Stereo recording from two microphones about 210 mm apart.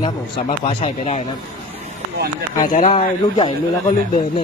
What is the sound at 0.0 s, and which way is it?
Speech, 25° left (ahead or behind).